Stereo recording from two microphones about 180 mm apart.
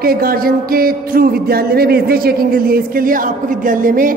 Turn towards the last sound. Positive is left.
turn(degrees=-50)  # may be behind; listen again after turning